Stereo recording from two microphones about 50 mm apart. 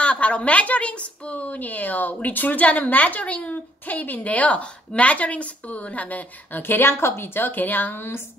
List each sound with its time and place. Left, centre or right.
0.0 s a woman's voice: left